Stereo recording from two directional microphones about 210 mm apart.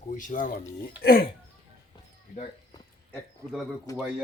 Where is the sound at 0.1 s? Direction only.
40° left (ahead or behind).